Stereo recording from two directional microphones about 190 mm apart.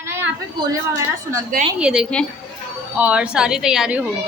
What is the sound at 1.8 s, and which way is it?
A woman's voice, 5° right (ahead or behind).